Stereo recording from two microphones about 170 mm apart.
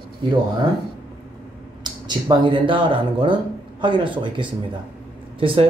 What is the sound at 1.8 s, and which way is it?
Speech, 25° right (ahead or behind).